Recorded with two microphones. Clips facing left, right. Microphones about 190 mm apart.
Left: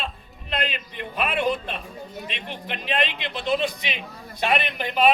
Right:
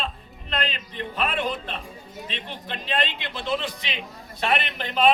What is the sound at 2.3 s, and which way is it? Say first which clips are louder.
A man's voice: right 2 dB; 15° left (ahead or behind).